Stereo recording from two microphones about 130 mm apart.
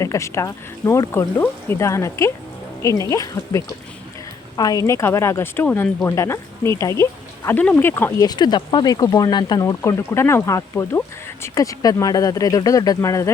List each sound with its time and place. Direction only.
0.0 s speech: 25° left (ahead or behind)
8.2 s speech: 30° left (ahead or behind)